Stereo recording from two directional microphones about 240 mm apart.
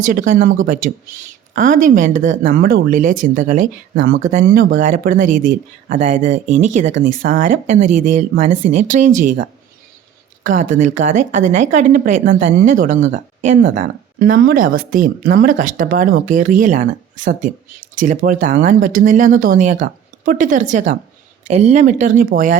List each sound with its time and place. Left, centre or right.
0.0 s speech: right